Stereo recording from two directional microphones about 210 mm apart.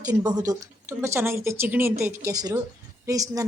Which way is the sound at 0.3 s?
15° right (ahead or behind).